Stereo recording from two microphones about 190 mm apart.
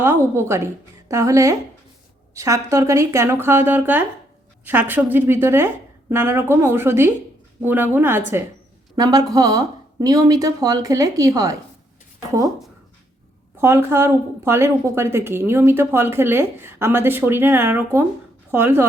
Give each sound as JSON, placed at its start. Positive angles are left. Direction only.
{"t": 0.0, "sound": "a woman's voice", "side_deg": -15}
{"t": 12.5, "sound": "speech", "side_deg": 0}
{"t": 13.6, "sound": "a woman's voice", "side_deg": -15}